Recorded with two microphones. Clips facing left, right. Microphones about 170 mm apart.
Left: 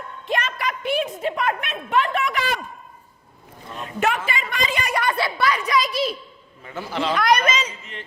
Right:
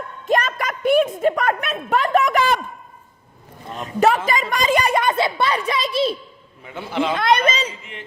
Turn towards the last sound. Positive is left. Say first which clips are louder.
# right 1 dB
turn(degrees=-30)  # may be behind; listen again after turning